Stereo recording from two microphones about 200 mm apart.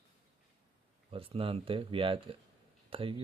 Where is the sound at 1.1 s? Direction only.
25° right (ahead or behind).